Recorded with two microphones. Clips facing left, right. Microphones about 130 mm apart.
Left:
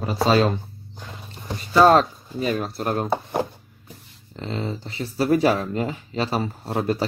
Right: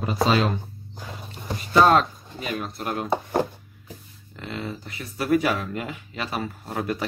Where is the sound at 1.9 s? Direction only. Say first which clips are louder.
Left 3 dB; 35° left (ahead or behind).